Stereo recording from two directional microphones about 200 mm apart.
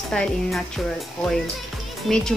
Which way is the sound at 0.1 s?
5° left (ahead or behind).